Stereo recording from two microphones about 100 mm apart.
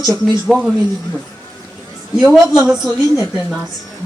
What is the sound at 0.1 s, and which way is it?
Speech, centre (ahead or behind).